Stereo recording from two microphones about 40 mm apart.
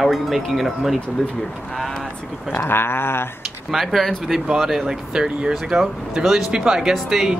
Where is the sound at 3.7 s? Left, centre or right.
Centre.